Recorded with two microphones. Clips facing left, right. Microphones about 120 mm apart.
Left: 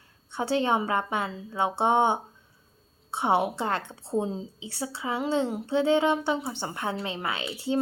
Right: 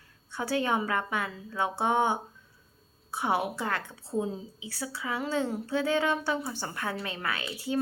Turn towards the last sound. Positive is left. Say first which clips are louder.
# left 3 dB
turn(degrees=25)  # may be behind; listen again after turning